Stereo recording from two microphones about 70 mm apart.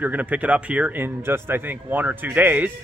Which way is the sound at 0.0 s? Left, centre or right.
Right.